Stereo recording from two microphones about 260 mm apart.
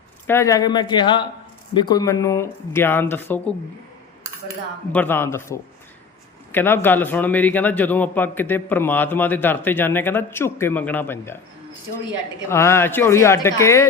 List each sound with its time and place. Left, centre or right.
0.3 s a man's voice: centre
4.9 s a man's voice: centre
12.5 s a man's voice: centre